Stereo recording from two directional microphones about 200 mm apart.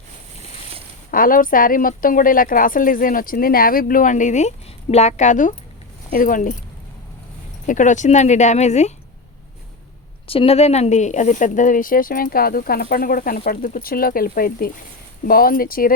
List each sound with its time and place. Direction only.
1.1 s a woman's voice: 45° left (ahead or behind)
7.7 s speech: 40° left (ahead or behind)
10.2 s a woman's voice: 30° left (ahead or behind); by 16.0 s 45° left (ahead or behind)